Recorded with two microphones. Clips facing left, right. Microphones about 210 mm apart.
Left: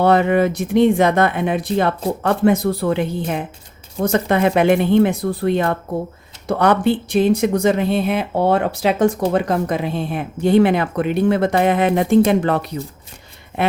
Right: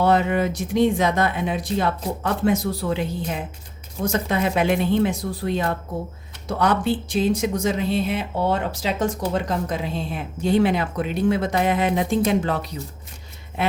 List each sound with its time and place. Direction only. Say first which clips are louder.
0.0 s speech: left 5 dB; 60° left (ahead or behind)